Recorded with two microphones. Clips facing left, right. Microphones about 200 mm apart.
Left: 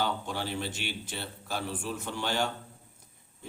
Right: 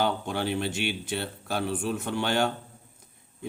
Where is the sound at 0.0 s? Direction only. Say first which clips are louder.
Right 5 dB; 60° right (ahead or behind).